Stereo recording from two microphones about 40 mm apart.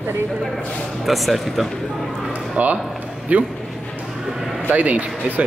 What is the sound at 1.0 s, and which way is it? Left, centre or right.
Speech, centre.